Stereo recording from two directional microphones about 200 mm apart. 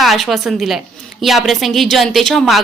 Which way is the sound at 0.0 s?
Centre (ahead or behind).